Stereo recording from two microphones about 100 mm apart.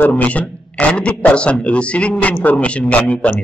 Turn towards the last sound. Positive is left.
turn(degrees=15)  # may be behind; listen again after turning